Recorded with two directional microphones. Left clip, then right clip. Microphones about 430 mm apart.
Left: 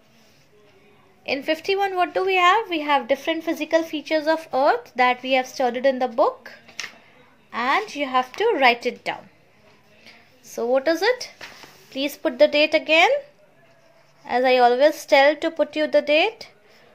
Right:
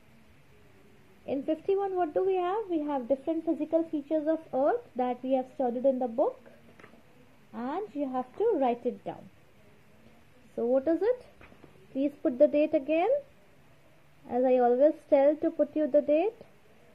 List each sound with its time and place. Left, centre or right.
1.2 s a woman's voice: centre
7.5 s a woman's voice: centre
10.5 s a woman's voice: centre
14.2 s speech: centre